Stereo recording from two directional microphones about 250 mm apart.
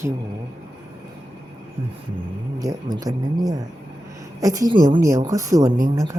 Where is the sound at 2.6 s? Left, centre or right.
Centre.